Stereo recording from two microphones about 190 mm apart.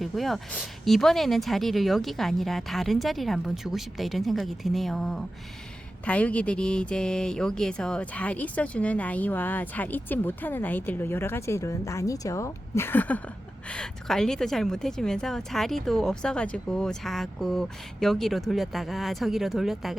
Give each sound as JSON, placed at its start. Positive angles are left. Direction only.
{"t": 0.0, "sound": "speech", "side_deg": 0}